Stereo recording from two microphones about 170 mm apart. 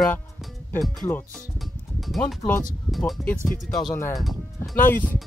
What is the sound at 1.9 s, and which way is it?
Music, centre (ahead or behind).